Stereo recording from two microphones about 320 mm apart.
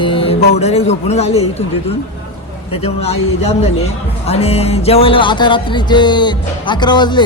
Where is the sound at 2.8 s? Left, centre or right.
Centre.